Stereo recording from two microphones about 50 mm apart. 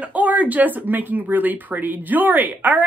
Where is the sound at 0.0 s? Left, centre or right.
Right.